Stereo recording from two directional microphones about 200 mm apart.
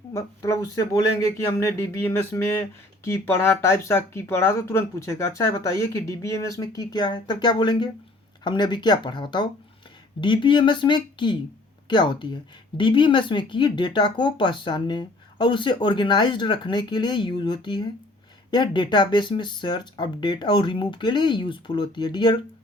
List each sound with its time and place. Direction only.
0.1 s speech: 15° left (ahead or behind)